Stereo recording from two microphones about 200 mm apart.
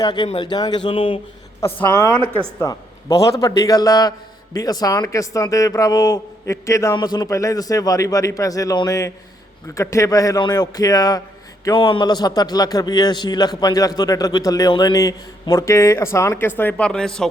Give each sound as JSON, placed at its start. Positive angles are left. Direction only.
{"t": 0.0, "sound": "a man's voice", "side_deg": 20}
{"t": 1.6, "sound": "a man's voice", "side_deg": 15}